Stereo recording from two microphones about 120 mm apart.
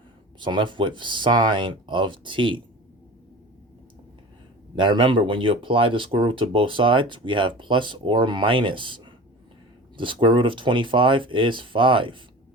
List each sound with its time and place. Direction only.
0.3 s speech: 40° right (ahead or behind)
4.7 s speech: 45° right (ahead or behind)